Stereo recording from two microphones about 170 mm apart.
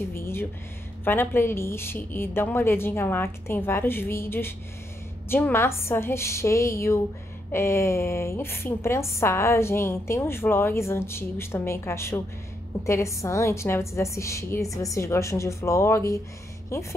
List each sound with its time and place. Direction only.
0.1 s a woman's voice: 15° left (ahead or behind)